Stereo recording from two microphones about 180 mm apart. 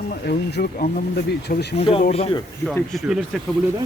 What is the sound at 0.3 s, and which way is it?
Speech, 60° left (ahead or behind).